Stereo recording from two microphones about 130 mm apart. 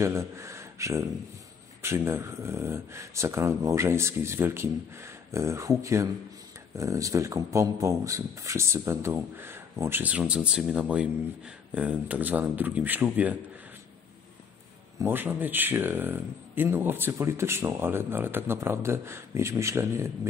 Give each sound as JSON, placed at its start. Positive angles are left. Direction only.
{"t": 0.0, "sound": "speech", "side_deg": -25}
{"t": 15.0, "sound": "speech", "side_deg": -15}